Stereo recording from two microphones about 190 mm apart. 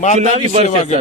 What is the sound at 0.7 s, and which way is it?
Speech, 35° left (ahead or behind).